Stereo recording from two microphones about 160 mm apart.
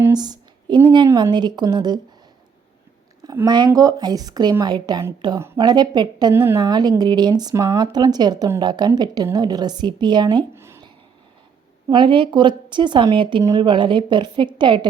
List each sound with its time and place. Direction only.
0.0 s a sound: 25° right (ahead or behind)
0.9 s speech: 25° right (ahead or behind)
3.2 s speech: 25° right (ahead or behind)
6.3 s a woman's voice: 15° right (ahead or behind)
6.6 s speech: 25° right (ahead or behind)
10.5 s a sound: 15° right (ahead or behind)
11.9 s speech: 30° right (ahead or behind)